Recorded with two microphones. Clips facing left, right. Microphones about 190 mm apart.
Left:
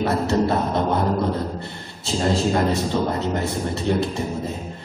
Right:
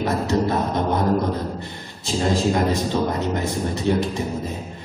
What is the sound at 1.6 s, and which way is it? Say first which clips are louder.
A man's voice: even; 15° right (ahead or behind).